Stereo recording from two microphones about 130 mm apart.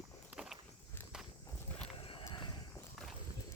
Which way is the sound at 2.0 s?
40° left (ahead or behind).